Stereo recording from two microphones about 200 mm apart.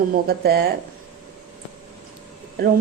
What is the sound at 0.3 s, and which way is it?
Speech, 50° right (ahead or behind).